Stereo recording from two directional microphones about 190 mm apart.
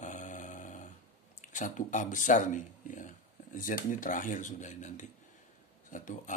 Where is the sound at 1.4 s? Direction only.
40° left (ahead or behind).